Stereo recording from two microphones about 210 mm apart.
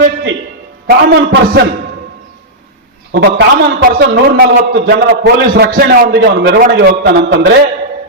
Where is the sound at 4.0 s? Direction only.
50° right (ahead or behind).